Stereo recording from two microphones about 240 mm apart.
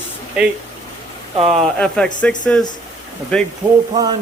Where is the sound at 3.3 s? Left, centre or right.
Centre.